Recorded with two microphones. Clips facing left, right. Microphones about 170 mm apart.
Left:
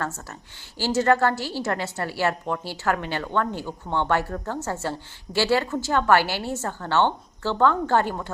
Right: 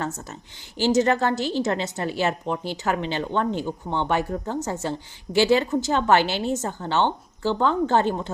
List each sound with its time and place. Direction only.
0.0 s a woman's voice: 20° right (ahead or behind)